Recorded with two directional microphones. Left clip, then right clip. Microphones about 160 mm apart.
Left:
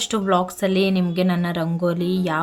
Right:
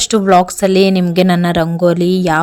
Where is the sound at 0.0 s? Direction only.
40° right (ahead or behind).